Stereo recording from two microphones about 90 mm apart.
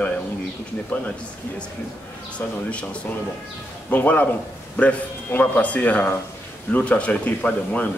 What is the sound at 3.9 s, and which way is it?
Speech, 20° left (ahead or behind).